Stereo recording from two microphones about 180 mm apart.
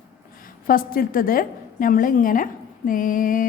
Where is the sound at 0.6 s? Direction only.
55° left (ahead or behind).